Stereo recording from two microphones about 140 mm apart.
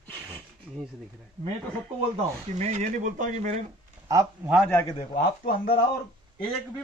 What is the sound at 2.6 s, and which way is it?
Speech, 60° right (ahead or behind).